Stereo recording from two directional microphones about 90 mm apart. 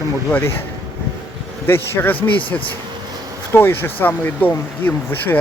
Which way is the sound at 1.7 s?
25° left (ahead or behind).